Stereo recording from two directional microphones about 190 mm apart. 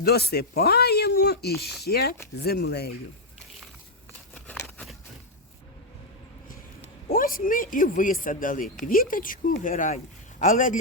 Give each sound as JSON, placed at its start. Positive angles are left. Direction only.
{"t": 0.0, "sound": "speech", "side_deg": 55}
{"t": 4.4, "sound": "a sound", "side_deg": 5}
{"t": 7.1, "sound": "speech", "side_deg": 45}